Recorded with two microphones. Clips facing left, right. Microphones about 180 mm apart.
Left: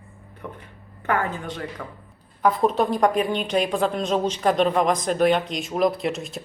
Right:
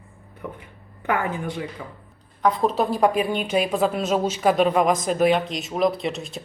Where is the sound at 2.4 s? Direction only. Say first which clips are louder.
Left 1 dB; centre (ahead or behind).